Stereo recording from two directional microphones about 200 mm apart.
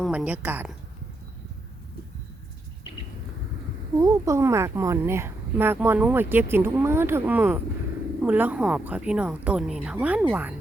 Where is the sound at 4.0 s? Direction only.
15° right (ahead or behind).